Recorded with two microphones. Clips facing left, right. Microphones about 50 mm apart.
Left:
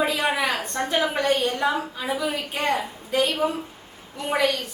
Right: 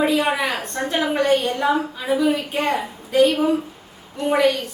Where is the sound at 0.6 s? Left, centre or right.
Centre.